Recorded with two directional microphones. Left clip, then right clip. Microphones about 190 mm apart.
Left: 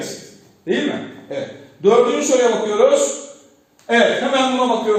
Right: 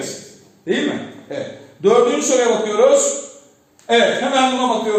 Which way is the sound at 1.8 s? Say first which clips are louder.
Even; 25° right (ahead or behind).